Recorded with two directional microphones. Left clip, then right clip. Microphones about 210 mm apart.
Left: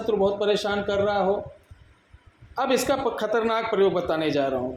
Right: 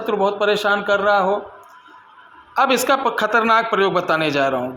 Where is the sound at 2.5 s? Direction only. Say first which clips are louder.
Right 7 dB; 15° right (ahead or behind).